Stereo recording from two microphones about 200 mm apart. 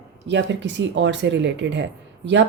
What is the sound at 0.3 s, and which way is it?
Speech, 65° right (ahead or behind).